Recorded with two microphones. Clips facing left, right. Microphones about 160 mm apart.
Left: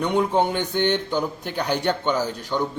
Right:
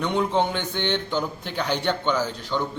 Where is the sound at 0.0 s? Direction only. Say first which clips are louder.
Left 2 dB; 15° left (ahead or behind).